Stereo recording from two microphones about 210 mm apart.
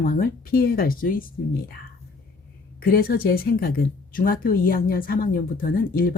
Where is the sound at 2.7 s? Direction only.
45° left (ahead or behind).